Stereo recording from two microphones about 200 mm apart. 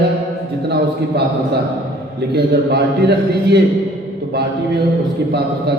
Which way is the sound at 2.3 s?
55° right (ahead or behind).